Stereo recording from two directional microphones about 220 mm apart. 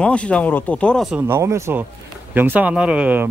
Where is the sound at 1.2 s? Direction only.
10° right (ahead or behind).